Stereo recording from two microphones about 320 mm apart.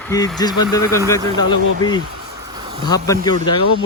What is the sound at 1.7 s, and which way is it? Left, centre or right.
Speech, left.